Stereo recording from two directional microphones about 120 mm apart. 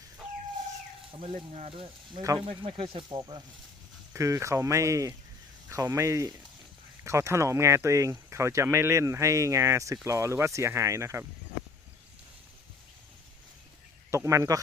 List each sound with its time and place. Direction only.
1.7 s speech: 45° right (ahead or behind)
4.1 s speech: 25° right (ahead or behind)
14.1 s speech: 25° right (ahead or behind)